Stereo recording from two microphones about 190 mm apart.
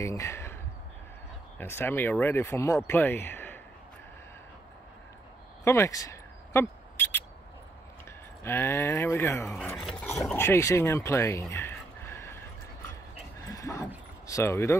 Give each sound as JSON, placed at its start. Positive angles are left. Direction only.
{"t": 0.0, "sound": "speech", "side_deg": 15}
{"t": 1.6, "sound": "speech", "side_deg": 10}
{"t": 5.6, "sound": "a sound", "side_deg": 15}
{"t": 8.5, "sound": "speech", "side_deg": 15}
{"t": 10.3, "sound": "speech", "side_deg": 10}
{"t": 13.5, "sound": "a sound", "side_deg": 15}